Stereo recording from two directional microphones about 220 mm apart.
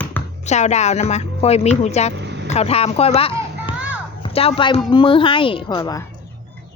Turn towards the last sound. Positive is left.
turn(degrees=15)  # may be behind; listen again after turning